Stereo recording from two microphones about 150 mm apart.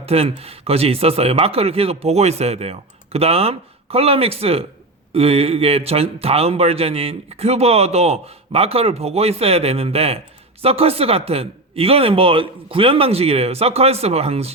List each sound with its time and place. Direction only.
0.0 s speech: 40° right (ahead or behind)